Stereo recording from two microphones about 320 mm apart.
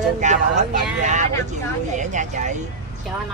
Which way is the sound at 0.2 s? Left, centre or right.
Right.